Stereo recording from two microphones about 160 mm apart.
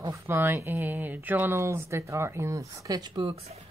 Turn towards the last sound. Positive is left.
turn(degrees=-30)  # may be behind; listen again after turning